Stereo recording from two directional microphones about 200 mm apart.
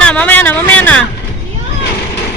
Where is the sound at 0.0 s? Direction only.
5° left (ahead or behind).